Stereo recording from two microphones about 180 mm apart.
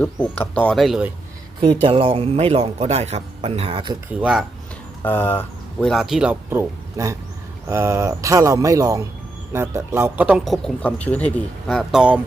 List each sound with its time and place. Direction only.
0.0 s speech: 10° left (ahead or behind)
1.8 s a man's voice: 30° right (ahead or behind)
4.1 s speech: 5° right (ahead or behind)
5.0 s speech: 10° left (ahead or behind)